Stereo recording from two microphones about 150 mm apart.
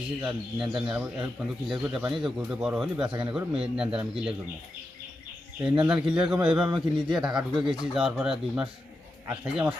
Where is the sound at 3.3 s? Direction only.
5° right (ahead or behind).